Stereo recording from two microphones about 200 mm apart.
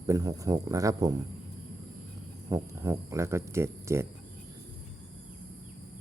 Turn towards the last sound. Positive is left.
turn(degrees=-15)  # may be behind; listen again after turning